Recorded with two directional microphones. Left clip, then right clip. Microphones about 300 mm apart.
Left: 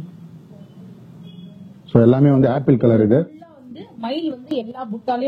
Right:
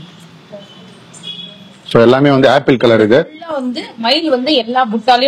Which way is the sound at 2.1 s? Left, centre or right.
Centre.